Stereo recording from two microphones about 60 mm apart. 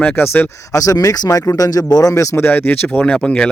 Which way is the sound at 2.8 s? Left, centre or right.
Centre.